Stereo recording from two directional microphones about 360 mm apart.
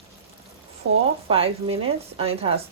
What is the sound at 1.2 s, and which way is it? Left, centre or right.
Speech, centre.